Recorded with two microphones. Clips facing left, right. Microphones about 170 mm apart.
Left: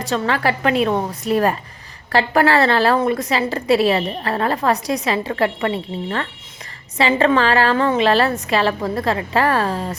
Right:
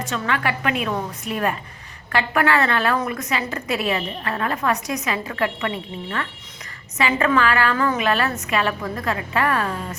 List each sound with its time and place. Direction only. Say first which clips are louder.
0.0 s a woman's voice: left 5 dB; 35° left (ahead or behind)